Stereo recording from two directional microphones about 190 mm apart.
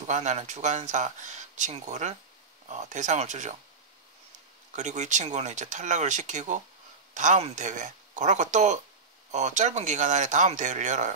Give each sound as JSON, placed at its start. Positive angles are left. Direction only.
{"t": 0.0, "sound": "speech", "side_deg": -40}
{"t": 4.7, "sound": "speech", "side_deg": -40}